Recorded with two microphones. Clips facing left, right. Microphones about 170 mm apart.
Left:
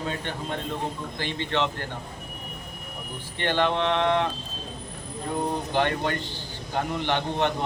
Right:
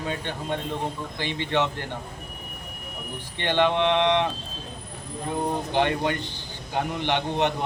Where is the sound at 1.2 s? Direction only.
15° right (ahead or behind).